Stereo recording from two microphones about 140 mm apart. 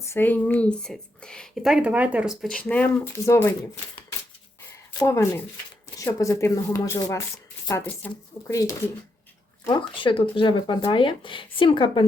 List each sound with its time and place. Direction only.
0.0 s speech: 15° left (ahead or behind)
5.0 s speech: 20° left (ahead or behind)
9.9 s speech: 40° left (ahead or behind)